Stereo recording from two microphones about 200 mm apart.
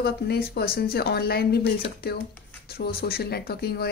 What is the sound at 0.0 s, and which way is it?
Speech, 50° left (ahead or behind).